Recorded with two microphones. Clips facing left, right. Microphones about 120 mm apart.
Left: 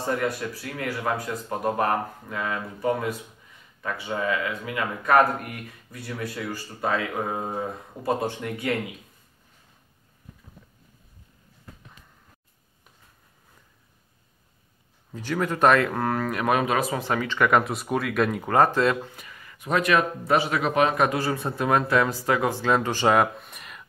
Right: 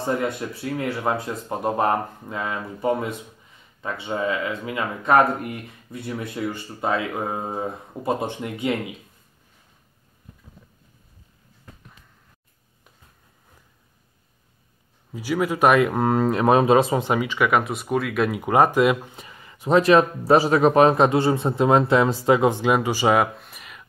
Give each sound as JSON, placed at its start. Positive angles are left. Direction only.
{"t": 0.0, "sound": "speech", "side_deg": -25}
{"t": 15.1, "sound": "speech", "side_deg": -10}
{"t": 19.1, "sound": "speech", "side_deg": -25}